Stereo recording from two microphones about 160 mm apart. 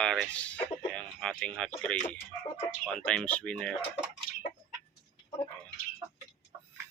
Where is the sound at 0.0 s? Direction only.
5° left (ahead or behind).